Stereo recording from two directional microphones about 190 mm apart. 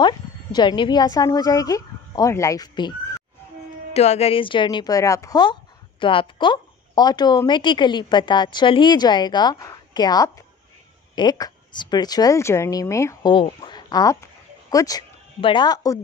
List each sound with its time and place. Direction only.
0.0 s speech: 25° left (ahead or behind)
3.9 s a woman's voice: 35° left (ahead or behind)